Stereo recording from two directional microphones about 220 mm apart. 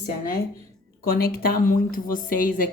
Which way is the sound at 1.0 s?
40° left (ahead or behind).